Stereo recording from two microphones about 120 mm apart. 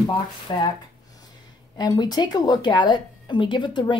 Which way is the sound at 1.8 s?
35° left (ahead or behind).